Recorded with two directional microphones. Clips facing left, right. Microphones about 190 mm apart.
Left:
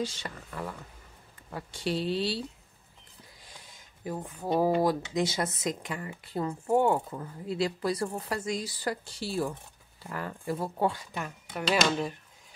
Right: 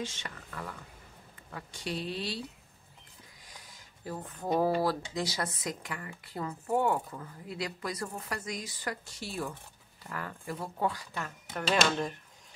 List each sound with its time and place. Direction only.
0.0 s speech: 35° left (ahead or behind)
3.4 s a sound: 25° left (ahead or behind)
4.8 s speech: 20° left (ahead or behind)
11.1 s speech: 10° left (ahead or behind)